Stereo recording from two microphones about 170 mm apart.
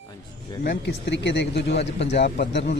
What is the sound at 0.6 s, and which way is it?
Speech, 75° left (ahead or behind).